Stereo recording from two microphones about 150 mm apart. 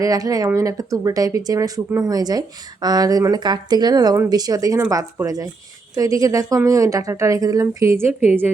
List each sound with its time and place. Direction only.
0.0 s speech: 25° right (ahead or behind)